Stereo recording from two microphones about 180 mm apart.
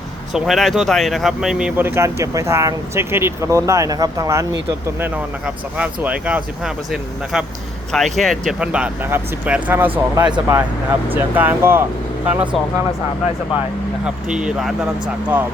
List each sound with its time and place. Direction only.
0.3 s speech: centre (ahead or behind)
7.9 s speech: centre (ahead or behind)
9.9 s speech: 25° right (ahead or behind)
11.1 s speech: 10° right (ahead or behind)
14.0 s speech: 5° right (ahead or behind)